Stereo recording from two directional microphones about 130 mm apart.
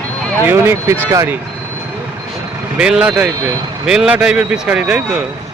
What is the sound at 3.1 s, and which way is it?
Speech, 25° right (ahead or behind).